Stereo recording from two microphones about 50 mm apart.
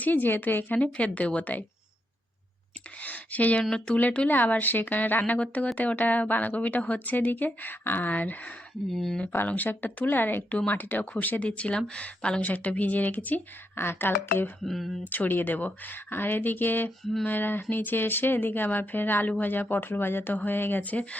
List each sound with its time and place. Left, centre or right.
0.0 s a woman's voice: left
3.0 s a sound: left
3.6 s speech: centre
4.3 s a woman's voice: left
8.9 s speech: centre
9.5 s a woman's voice: left
11.4 s a woman's voice: left
13.7 s speech: left
14.6 s speech: centre
15.0 s a woman's voice: left